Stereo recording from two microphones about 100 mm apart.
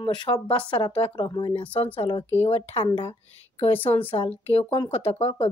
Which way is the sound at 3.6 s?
65° left (ahead or behind).